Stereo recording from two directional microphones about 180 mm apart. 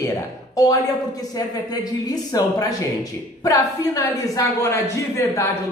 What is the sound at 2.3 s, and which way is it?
A man's voice, 20° left (ahead or behind).